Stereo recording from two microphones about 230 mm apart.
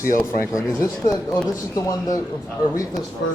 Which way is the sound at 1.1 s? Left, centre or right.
Centre.